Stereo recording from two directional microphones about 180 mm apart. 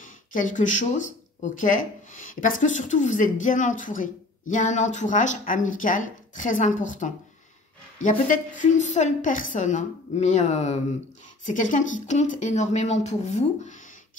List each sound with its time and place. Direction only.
0.0 s a woman's voice: 45° left (ahead or behind)